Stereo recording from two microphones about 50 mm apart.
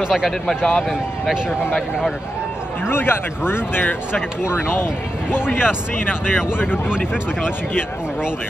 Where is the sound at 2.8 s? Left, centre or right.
Left.